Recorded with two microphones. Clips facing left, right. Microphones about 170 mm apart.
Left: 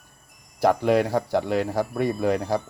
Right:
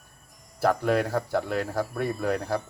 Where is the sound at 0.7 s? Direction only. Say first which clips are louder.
Left 4 dB; centre (ahead or behind).